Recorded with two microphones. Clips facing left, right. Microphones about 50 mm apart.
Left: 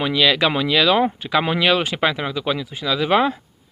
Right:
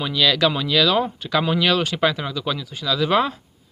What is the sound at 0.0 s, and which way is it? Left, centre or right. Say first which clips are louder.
Speech: left 2 dB; left.